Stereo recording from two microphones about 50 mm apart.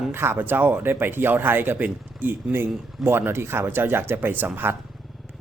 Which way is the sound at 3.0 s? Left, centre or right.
Right.